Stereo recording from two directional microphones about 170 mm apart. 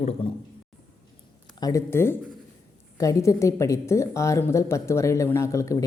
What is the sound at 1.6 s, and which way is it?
A woman's voice, 15° left (ahead or behind).